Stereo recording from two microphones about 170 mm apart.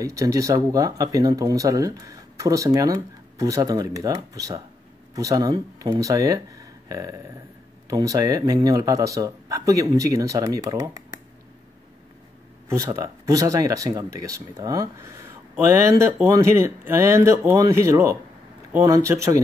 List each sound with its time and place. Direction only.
0.0 s speech: 20° right (ahead or behind)
12.6 s speech: 20° right (ahead or behind)